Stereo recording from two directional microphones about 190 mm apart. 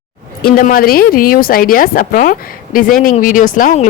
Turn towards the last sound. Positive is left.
turn(degrees=45)  # may be behind; listen again after turning